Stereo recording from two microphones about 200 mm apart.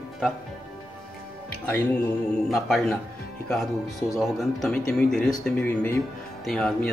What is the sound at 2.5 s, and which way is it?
Speech, centre (ahead or behind).